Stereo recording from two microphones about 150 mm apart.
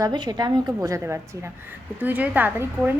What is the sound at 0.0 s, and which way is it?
A woman's voice, 25° right (ahead or behind).